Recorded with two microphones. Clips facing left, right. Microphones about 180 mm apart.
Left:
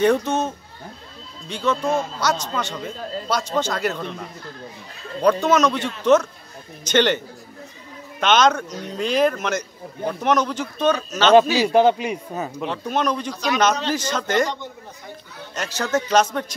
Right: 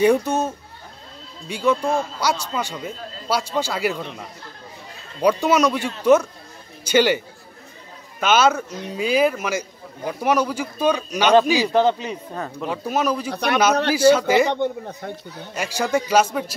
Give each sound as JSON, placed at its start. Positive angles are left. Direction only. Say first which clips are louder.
{"t": 0.0, "sound": "speech", "louder": "right 1 dB", "side_deg": -10}
{"t": 1.5, "sound": "speech", "louder": "right 1 dB", "side_deg": -10}
{"t": 5.2, "sound": "a man's voice", "louder": "even", "side_deg": -10}
{"t": 8.2, "sound": "speech", "louder": "even", "side_deg": -5}
{"t": 11.6, "sound": "speech", "louder": "left 2 dB", "side_deg": 15}
{"t": 12.6, "sound": "speech", "louder": "right 1 dB", "side_deg": -10}
{"t": 13.3, "sound": "speech", "louder": "right 2 dB", "side_deg": -60}
{"t": 13.9, "sound": "speech", "louder": "right 7 dB", "side_deg": -10}
{"t": 14.5, "sound": "speech", "louder": "right 9 dB", "side_deg": -60}
{"t": 15.5, "sound": "speech", "louder": "right 1 dB", "side_deg": -10}